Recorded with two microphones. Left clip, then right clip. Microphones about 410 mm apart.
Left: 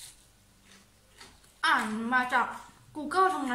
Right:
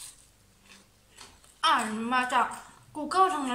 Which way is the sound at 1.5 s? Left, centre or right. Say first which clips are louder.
Right 1 dB; centre.